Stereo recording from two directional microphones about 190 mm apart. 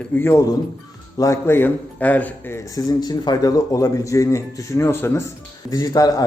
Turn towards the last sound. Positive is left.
turn(degrees=20)  # may be behind; listen again after turning